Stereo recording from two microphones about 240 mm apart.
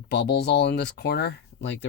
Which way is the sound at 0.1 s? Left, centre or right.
Left.